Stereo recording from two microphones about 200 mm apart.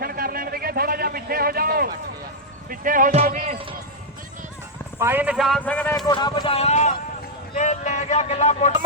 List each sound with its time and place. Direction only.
0.0 s a sound: 50° right (ahead or behind)
2.6 s speech: 45° right (ahead or behind)
4.9 s a man's voice: 10° right (ahead or behind); by 6.1 s 10° left (ahead or behind)
6.1 s speech: 20° left (ahead or behind)